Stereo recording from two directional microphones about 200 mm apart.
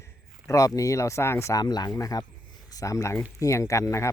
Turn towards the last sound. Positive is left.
turn(degrees=15)  # may be behind; listen again after turning